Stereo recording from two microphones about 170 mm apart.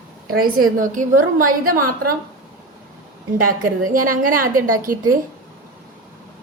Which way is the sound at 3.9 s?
55° right (ahead or behind).